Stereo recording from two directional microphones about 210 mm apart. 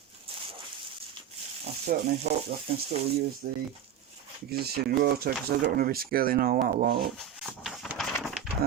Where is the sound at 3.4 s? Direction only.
40° right (ahead or behind).